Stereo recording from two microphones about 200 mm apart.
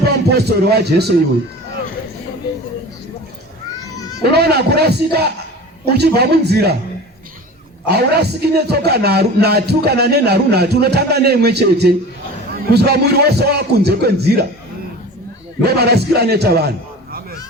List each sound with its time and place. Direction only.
0.0 s a man's voice: 55° right (ahead or behind)
4.2 s speech: 55° right (ahead or behind)
7.9 s speech: 55° right (ahead or behind)
15.6 s a man's voice: 55° right (ahead or behind)